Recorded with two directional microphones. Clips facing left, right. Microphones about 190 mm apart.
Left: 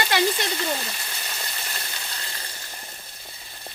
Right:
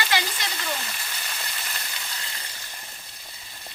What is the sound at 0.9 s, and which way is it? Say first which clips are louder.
Frying: left 1 dB; 25° left (ahead or behind).